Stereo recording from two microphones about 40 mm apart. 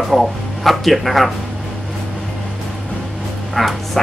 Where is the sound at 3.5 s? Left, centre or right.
Centre.